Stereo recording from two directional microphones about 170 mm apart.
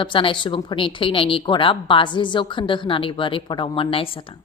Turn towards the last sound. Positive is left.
turn(degrees=30)  # may be behind; listen again after turning